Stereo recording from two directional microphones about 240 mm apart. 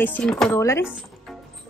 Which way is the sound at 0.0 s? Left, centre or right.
Centre.